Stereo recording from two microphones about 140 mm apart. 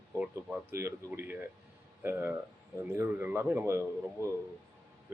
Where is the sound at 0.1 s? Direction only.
15° right (ahead or behind).